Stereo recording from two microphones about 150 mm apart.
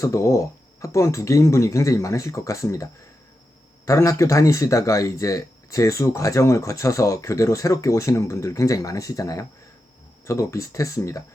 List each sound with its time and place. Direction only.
0.0 s speech: 20° left (ahead or behind)